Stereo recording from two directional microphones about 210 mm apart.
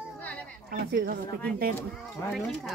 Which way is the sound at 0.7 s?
45° right (ahead or behind).